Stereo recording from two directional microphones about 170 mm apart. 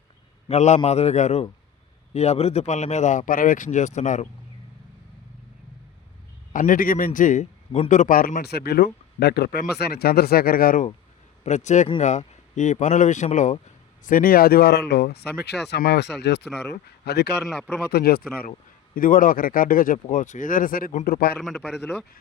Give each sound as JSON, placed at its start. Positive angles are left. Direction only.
{"t": 0.4, "sound": "a man's voice", "side_deg": 40}
{"t": 6.5, "sound": "a man's voice", "side_deg": 50}
{"t": 11.4, "sound": "speech", "side_deg": 45}
{"t": 17.4, "sound": "a man's voice", "side_deg": 0}
{"t": 17.9, "sound": "a man's voice", "side_deg": 65}
{"t": 18.9, "sound": "a man's voice", "side_deg": 55}
{"t": 21.3, "sound": "a man's voice", "side_deg": 0}